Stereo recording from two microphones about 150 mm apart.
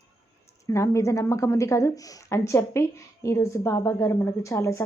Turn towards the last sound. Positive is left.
turn(degrees=20)  # may be behind; listen again after turning